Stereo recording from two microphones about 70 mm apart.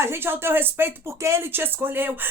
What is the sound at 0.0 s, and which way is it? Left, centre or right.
Speech, right.